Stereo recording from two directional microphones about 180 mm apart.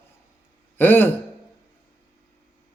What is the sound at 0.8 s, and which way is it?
Speech, 10° left (ahead or behind).